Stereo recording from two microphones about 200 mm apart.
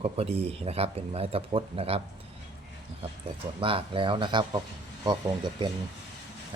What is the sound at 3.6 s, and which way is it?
Speech, 25° right (ahead or behind).